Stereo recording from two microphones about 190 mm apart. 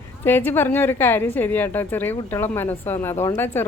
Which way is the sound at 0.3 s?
10° left (ahead or behind).